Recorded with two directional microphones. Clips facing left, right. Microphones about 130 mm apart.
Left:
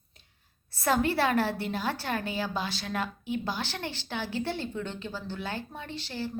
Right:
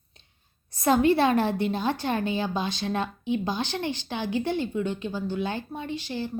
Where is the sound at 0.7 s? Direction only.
20° right (ahead or behind).